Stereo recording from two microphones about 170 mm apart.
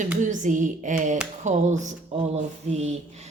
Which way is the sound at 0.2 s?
50° right (ahead or behind).